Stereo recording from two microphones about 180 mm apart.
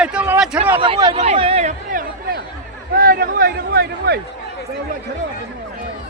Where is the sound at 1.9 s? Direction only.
50° right (ahead or behind).